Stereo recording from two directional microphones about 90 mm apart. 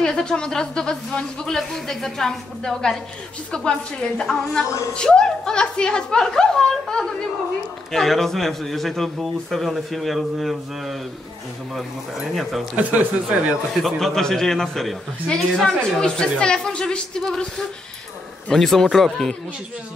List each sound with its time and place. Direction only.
0.0 s a man's voice: 10° left (ahead or behind)
12.7 s speech: 15° right (ahead or behind)
13.8 s a man's voice: 5° left (ahead or behind)